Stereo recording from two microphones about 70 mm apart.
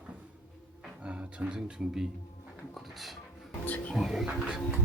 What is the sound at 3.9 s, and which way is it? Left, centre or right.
Speech, centre.